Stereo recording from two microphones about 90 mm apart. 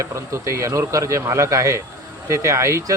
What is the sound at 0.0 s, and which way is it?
A man's voice, 35° right (ahead or behind).